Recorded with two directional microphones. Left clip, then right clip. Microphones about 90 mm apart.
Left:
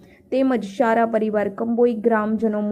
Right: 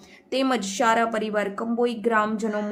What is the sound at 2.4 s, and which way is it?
Speech, 15° left (ahead or behind).